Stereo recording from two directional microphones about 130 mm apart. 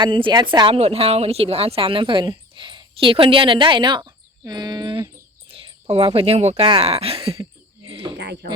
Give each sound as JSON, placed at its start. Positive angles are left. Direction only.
{"t": 0.0, "sound": "a woman's voice", "side_deg": -40}
{"t": 0.8, "sound": "a woman's voice", "side_deg": -50}
{"t": 7.9, "sound": "a sound", "side_deg": -45}